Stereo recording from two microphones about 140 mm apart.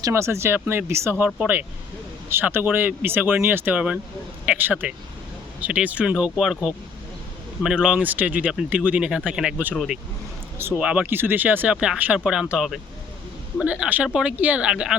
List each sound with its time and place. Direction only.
0.0 s speech: 20° right (ahead or behind)